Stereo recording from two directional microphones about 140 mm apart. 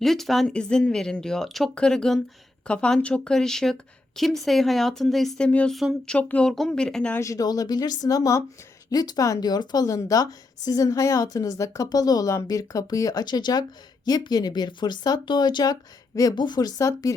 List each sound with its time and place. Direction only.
0.0 s a woman's voice: centre (ahead or behind)
7.2 s speech: 25° left (ahead or behind)